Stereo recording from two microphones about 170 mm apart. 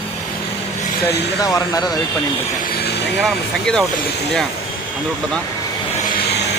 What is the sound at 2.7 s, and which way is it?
Vehicle, 75° left (ahead or behind).